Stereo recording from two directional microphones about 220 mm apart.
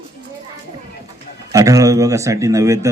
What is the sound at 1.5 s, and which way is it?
Speech, 15° right (ahead or behind).